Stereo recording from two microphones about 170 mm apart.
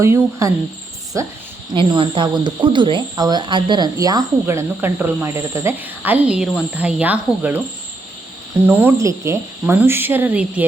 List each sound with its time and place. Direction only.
0.0 s speech: 15° right (ahead or behind)
1.7 s speech: 30° right (ahead or behind); by 7.2 s 10° right (ahead or behind)
8.6 s speech: 10° right (ahead or behind)